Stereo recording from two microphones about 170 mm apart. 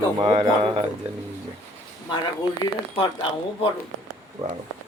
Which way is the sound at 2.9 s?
30° left (ahead or behind).